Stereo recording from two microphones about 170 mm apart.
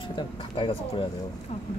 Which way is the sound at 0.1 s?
30° left (ahead or behind).